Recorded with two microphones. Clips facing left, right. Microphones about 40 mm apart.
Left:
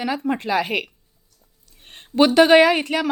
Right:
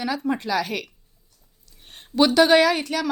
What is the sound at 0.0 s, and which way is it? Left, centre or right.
Speech, left.